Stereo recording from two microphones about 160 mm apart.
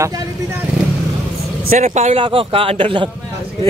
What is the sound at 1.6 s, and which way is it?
A man's voice, 50° right (ahead or behind).